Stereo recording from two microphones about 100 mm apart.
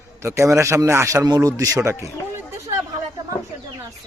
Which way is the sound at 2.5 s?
30° right (ahead or behind).